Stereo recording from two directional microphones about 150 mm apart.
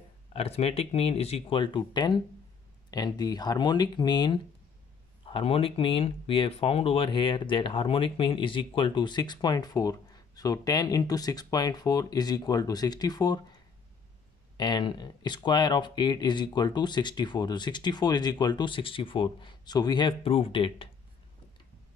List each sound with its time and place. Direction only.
0.3 s speech: 40° left (ahead or behind); by 13.6 s 25° left (ahead or behind)
14.6 s speech: 30° left (ahead or behind)